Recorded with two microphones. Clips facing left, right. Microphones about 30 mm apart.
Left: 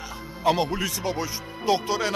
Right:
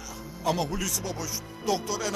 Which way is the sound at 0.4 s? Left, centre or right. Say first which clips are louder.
Left 5 dB; left.